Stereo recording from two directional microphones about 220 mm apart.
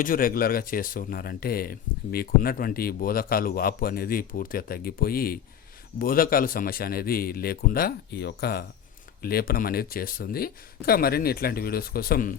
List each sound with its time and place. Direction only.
0.0 s speech: 40° left (ahead or behind)